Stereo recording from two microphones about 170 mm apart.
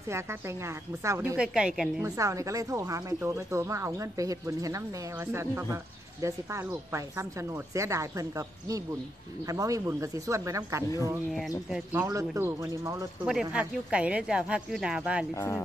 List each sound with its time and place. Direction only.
0.1 s speech: 15° right (ahead or behind)
2.0 s speech: 20° right (ahead or behind)
13.3 s speech: 5° right (ahead or behind)
15.3 s speech: 15° left (ahead or behind)